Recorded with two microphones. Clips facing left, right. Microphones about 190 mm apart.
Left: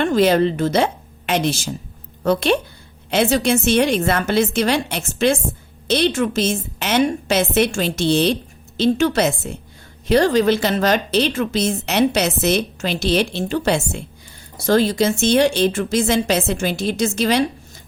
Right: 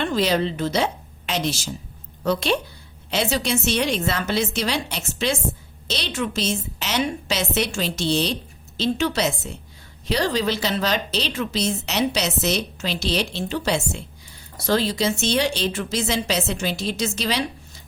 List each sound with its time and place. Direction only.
0.0 s a woman's voice: 50° left (ahead or behind)